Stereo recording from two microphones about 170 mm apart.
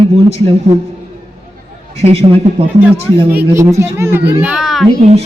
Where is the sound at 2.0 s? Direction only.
35° right (ahead or behind).